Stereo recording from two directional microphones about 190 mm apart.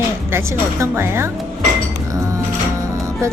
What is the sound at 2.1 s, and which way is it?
Dishes, 15° right (ahead or behind).